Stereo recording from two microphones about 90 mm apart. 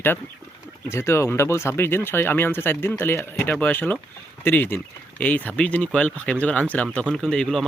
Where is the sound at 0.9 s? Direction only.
30° left (ahead or behind).